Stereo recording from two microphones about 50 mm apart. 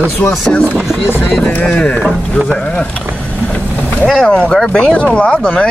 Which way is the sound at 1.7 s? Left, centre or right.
Left.